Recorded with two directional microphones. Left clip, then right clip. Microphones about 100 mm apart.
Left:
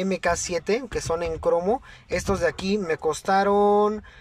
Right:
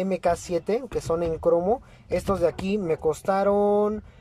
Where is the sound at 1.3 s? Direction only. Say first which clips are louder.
Right 1 dB; 15° left (ahead or behind).